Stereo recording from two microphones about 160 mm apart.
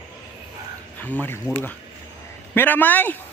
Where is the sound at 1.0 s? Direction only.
10° left (ahead or behind).